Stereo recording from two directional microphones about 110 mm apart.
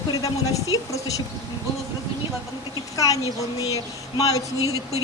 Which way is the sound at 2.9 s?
30° left (ahead or behind).